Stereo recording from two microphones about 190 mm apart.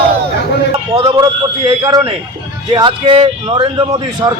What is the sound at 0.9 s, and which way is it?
A man's voice, 20° right (ahead or behind).